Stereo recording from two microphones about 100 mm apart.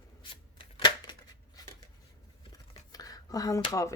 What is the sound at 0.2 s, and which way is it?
Shuffling cards, 50° left (ahead or behind).